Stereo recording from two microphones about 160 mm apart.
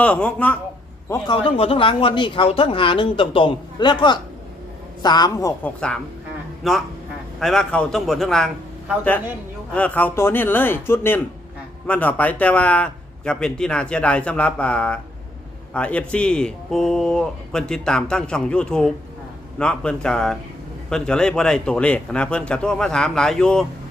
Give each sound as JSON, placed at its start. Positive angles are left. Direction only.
{"t": 0.0, "sound": "a man's voice", "side_deg": 10}
{"t": 1.1, "sound": "a woman's voice", "side_deg": 30}
{"t": 5.6, "sound": "speech", "side_deg": 5}
{"t": 9.7, "sound": "a man's voice", "side_deg": 10}